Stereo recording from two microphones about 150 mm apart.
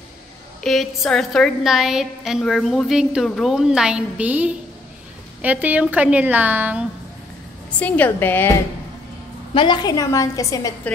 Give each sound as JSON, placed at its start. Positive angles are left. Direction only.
{"t": 0.6, "sound": "a woman's voice", "side_deg": 0}
{"t": 7.8, "sound": "a woman's voice", "side_deg": 10}
{"t": 9.5, "sound": "a woman's voice", "side_deg": 35}